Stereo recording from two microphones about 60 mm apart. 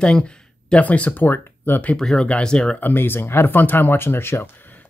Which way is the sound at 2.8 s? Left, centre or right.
Left.